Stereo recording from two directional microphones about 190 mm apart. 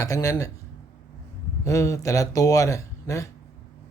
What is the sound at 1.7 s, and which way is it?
Speech, 15° left (ahead or behind).